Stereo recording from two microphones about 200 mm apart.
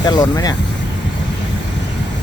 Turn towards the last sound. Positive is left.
turn(degrees=20)  # may be behind; listen again after turning